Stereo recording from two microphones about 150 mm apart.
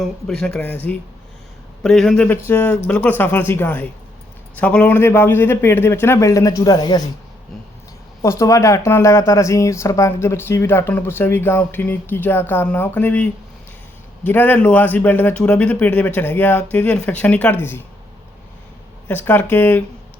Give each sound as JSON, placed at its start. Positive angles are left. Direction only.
{"t": 0.0, "sound": "speech", "side_deg": 5}
{"t": 8.2, "sound": "speech", "side_deg": 20}
{"t": 19.0, "sound": "speech", "side_deg": 15}